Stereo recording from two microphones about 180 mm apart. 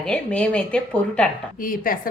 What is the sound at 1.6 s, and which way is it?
Speech, 50° left (ahead or behind).